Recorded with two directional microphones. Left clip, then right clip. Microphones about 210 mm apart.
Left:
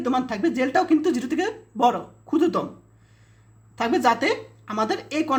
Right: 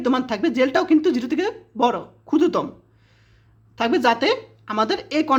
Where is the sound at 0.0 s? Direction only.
25° right (ahead or behind).